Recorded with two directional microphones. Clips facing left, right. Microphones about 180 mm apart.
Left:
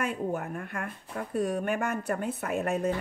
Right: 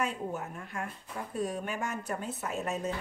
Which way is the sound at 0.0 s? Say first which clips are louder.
Left 3 dB; 55° left (ahead or behind).